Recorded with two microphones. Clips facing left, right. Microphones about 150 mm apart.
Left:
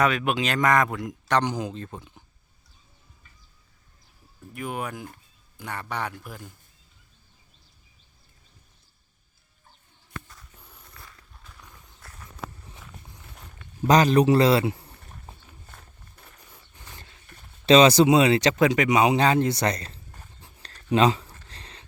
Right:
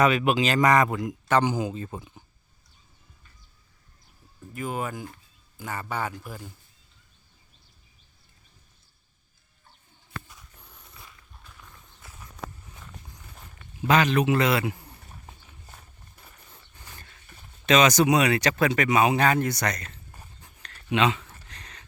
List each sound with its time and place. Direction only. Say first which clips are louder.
0.0 s speech: right 2 dB; centre (ahead or behind)
4.5 s speech: right 1 dB; centre (ahead or behind)
10.3 s a sound: left 1 dB; 5° left (ahead or behind)
10.9 s walk: even; 5° right (ahead or behind)
13.8 s a man's voice: left 4 dB; 40° left (ahead or behind)
16.7 s dog: left 1 dB; 20° left (ahead or behind)
17.7 s speech: left 4 dB; 30° left (ahead or behind)
20.4 s a sound: left 1 dB; 35° left (ahead or behind)